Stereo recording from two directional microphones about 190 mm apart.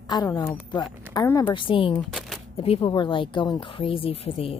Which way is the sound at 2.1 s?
Centre (ahead or behind).